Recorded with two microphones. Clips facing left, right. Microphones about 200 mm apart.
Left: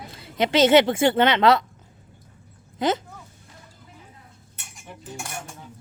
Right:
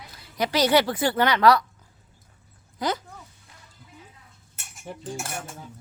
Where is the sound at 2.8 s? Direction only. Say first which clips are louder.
Left 4 dB; 25° left (ahead or behind).